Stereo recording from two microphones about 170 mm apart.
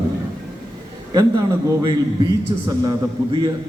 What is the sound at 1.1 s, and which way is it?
A man's voice, 20° right (ahead or behind).